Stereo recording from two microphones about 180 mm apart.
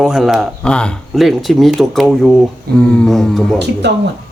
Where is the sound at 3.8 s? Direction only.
70° right (ahead or behind).